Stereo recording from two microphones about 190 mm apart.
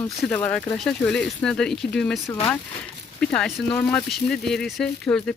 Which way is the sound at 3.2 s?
5° left (ahead or behind).